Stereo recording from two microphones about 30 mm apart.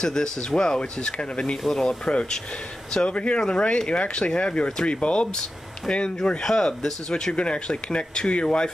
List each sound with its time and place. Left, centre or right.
0.0 s speech: left
0.7 s speech: left
1.7 s speech: centre
2.9 s speech: left
6.4 s speech: centre
7.3 s speech: left